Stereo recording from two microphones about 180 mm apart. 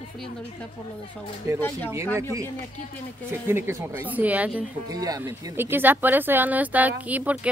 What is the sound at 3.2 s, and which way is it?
Speech, 15° right (ahead or behind).